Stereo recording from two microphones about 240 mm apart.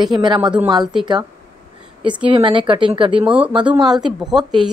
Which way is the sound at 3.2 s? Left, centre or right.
Centre.